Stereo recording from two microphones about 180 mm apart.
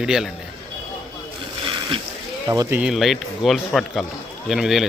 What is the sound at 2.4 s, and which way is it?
Speech, 20° right (ahead or behind).